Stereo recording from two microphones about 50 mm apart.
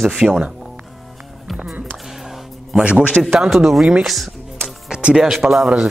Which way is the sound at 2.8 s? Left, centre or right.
Right.